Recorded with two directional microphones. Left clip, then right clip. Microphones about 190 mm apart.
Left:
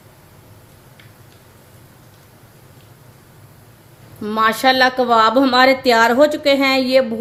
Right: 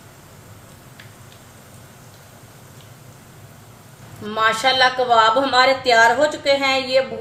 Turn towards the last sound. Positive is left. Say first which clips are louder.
# left 3 dB
turn(degrees=50)  # may be behind; listen again after turning